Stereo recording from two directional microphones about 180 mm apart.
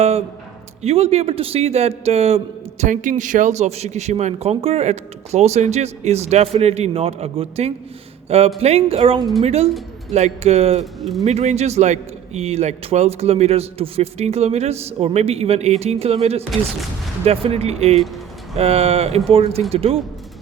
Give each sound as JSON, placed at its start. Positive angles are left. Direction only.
{"t": 0.8, "sound": "a man's voice", "side_deg": -35}
{"t": 11.0, "sound": "speech", "side_deg": 0}
{"t": 11.3, "sound": "a man's voice", "side_deg": -35}